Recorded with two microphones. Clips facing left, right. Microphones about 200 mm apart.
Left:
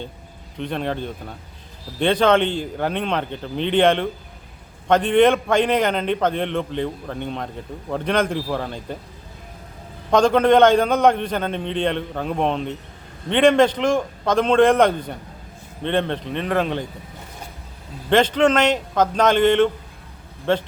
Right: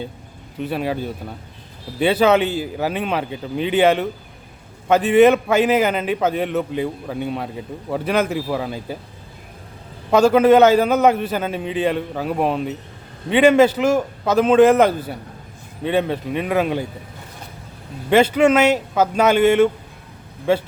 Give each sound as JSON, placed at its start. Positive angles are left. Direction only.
{"t": 0.6, "sound": "a man's voice", "side_deg": -5}
{"t": 10.1, "sound": "a man's voice", "side_deg": -5}
{"t": 18.1, "sound": "a man's voice", "side_deg": -10}